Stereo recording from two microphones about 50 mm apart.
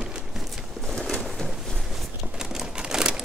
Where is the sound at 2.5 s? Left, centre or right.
Centre.